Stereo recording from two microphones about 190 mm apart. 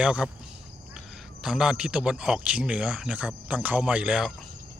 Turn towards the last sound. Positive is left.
turn(degrees=-5)  # may be behind; listen again after turning